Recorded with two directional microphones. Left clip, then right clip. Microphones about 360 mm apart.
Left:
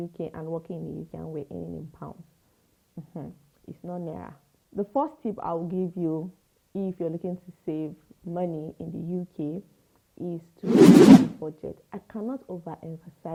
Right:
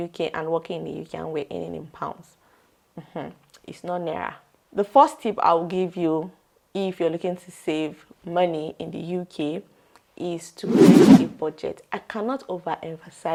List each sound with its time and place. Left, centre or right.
0.0 s speech: centre
0.8 s speech: right
1.1 s speech: centre